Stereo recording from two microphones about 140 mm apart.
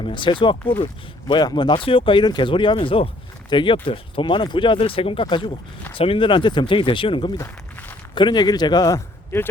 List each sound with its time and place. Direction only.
0.0 s speech: 35° left (ahead or behind)
7.4 s walk: 10° left (ahead or behind)
8.1 s speech: 35° left (ahead or behind)